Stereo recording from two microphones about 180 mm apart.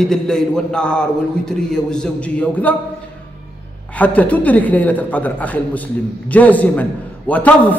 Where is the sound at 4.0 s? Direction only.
10° left (ahead or behind).